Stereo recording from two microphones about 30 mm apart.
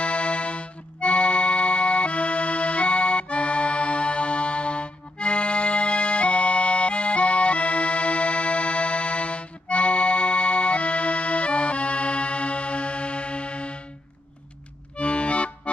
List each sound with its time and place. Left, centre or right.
0.0 s accordion: left
14.9 s accordion: left